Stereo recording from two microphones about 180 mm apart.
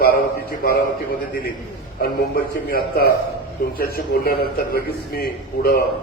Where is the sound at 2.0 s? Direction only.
55° left (ahead or behind).